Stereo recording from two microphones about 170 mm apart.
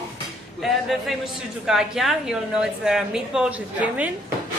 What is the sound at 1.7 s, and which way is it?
A woman's voice, centre (ahead or behind).